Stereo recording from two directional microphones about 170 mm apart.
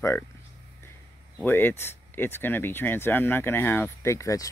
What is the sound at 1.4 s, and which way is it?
Speech, 10° left (ahead or behind).